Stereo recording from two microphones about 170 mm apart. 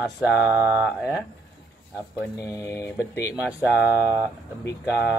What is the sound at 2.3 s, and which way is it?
Speech, 20° left (ahead or behind).